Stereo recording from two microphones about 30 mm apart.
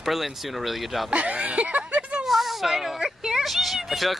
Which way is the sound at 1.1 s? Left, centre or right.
Right.